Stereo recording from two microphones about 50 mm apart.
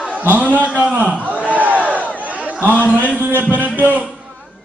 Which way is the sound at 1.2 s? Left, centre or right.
Right.